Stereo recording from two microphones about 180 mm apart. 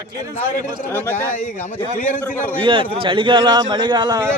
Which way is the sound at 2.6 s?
30° right (ahead or behind).